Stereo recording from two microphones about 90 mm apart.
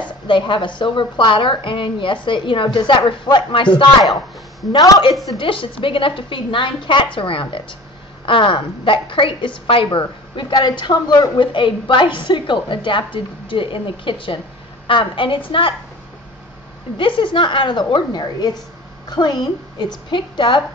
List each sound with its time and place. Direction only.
0.3 s a woman's voice: 65° left (ahead or behind)
4.7 s a woman's voice: 40° left (ahead or behind)
5.4 s a woman's voice: 75° left (ahead or behind)
16.9 s a woman's voice: 70° left (ahead or behind)